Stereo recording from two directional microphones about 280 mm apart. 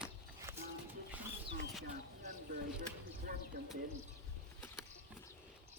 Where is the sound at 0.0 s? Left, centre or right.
Centre.